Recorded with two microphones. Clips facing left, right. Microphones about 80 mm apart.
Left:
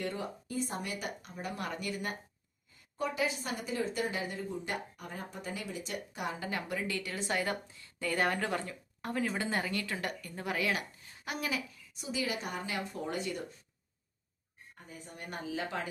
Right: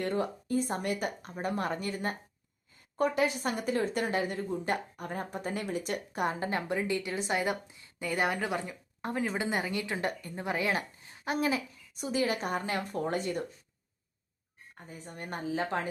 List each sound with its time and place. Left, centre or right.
0.0 s speech: right
3.0 s speech: right
11.9 s speech: right
14.8 s speech: right